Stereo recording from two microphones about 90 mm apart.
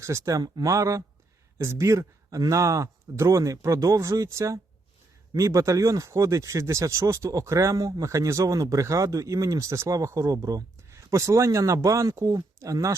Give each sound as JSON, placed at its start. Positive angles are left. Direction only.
{"t": 0.0, "sound": "speech", "side_deg": -35}